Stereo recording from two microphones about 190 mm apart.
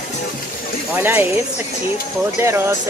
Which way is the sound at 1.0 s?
10° right (ahead or behind).